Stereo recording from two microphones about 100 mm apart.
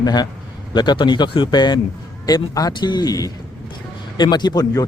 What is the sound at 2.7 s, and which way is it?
Mantra, 50° left (ahead or behind).